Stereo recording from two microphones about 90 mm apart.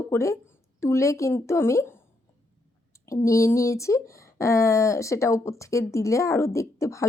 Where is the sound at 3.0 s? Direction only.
35° left (ahead or behind).